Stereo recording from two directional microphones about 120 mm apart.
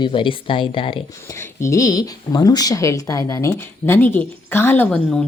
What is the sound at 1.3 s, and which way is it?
A woman's voice, 25° left (ahead or behind).